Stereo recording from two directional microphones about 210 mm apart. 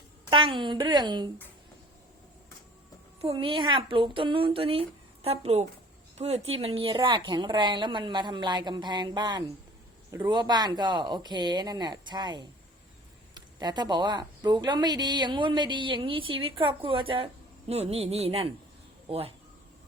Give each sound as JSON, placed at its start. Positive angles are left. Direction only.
{"t": 0.3, "sound": "speech", "side_deg": -25}
{"t": 3.2, "sound": "speech", "side_deg": -25}